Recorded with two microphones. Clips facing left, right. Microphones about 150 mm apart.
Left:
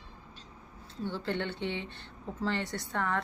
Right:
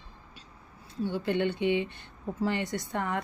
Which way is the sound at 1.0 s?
15° right (ahead or behind).